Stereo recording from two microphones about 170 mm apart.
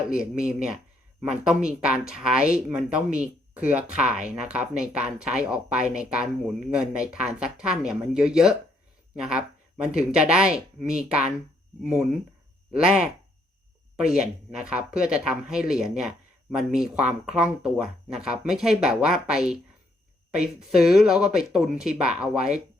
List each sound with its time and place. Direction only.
0.1 s speech: 5° right (ahead or behind)